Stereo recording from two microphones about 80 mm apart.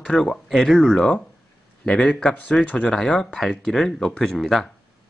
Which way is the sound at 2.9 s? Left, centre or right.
Centre.